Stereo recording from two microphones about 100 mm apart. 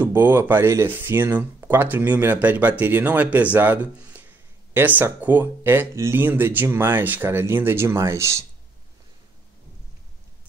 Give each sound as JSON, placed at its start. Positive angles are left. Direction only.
{"t": 0.0, "sound": "speech", "side_deg": -20}